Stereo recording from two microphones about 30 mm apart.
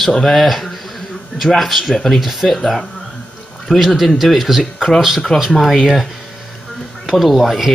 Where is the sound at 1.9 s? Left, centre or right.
Centre.